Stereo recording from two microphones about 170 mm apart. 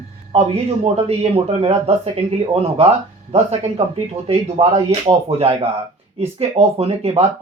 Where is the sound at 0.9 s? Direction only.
35° right (ahead or behind).